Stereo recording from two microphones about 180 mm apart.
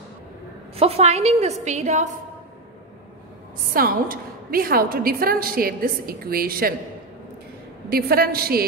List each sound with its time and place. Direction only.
0.7 s a woman's voice: 35° right (ahead or behind)
3.7 s a woman's voice: 50° right (ahead or behind)
7.9 s a woman's voice: 55° right (ahead or behind)